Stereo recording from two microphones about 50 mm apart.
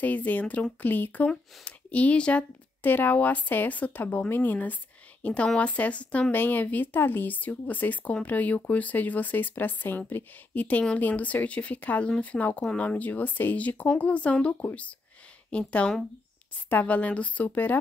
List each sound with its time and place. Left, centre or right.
0.0 s speech: left
1.3 s speech: left
2.8 s speech: left
6.3 s speech: left
15.5 s speech: left